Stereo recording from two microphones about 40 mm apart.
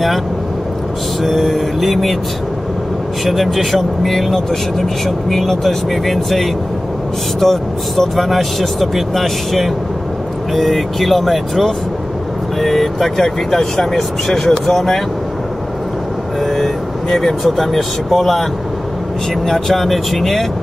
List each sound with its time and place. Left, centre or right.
1.2 s speech: centre
3.3 s speech: centre
16.4 s speech: centre
19.4 s speech: centre